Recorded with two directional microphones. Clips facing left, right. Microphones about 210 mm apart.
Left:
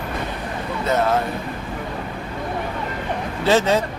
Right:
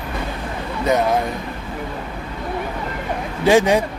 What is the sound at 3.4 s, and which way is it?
Speech, 15° right (ahead or behind).